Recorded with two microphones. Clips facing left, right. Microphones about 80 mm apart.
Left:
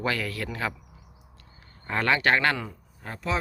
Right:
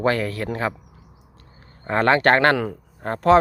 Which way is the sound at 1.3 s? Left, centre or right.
Right.